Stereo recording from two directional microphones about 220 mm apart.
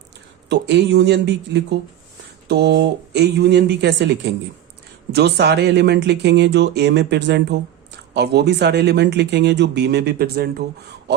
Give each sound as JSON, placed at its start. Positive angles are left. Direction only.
{"t": 0.4, "sound": "speech", "side_deg": -50}